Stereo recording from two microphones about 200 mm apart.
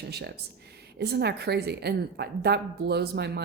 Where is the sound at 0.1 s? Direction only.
55° right (ahead or behind).